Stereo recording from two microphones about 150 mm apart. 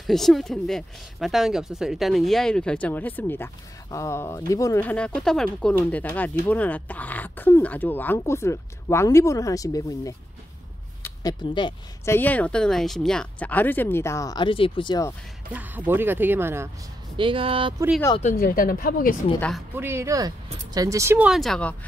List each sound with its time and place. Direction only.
0.0 s speech: centre (ahead or behind); by 4.8 s 20° left (ahead or behind)
4.8 s speech: 5° left (ahead or behind); by 10.1 s 25° left (ahead or behind)
11.0 s a sound: 25° left (ahead or behind)
12.0 s speech: 15° left (ahead or behind); by 15.0 s 30° left (ahead or behind)
15.5 s speech: 10° right (ahead or behind)
17.2 s speech: 35° right (ahead or behind)
18.3 s a woman's voice: 75° left (ahead or behind)
19.7 s speech: 15° right (ahead or behind)
21.3 s speech: centre (ahead or behind)